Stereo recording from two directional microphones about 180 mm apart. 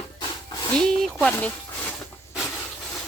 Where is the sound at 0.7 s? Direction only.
5° left (ahead or behind).